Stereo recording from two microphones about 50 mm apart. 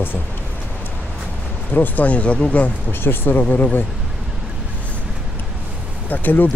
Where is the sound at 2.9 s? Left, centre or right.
Left.